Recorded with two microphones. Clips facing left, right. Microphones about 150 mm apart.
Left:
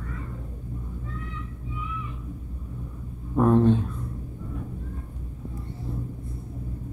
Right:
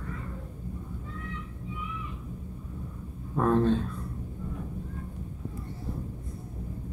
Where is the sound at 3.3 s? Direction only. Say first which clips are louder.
Left 5 dB; 15° left (ahead or behind).